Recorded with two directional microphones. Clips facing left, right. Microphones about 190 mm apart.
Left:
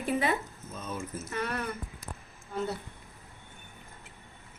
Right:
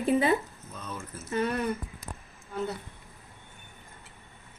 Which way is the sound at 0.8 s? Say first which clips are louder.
Left 3 dB; 20° left (ahead or behind).